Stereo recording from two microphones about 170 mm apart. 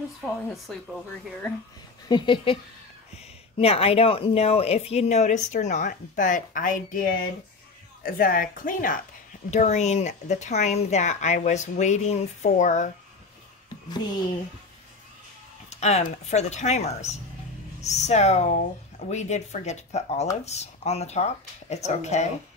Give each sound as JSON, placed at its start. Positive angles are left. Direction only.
{"t": 0.2, "sound": "a woman's voice", "side_deg": 5}
{"t": 2.0, "sound": "speech", "side_deg": 25}
{"t": 15.7, "sound": "speech", "side_deg": 40}